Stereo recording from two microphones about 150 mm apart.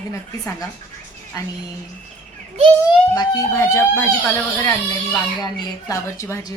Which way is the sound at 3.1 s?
25° left (ahead or behind).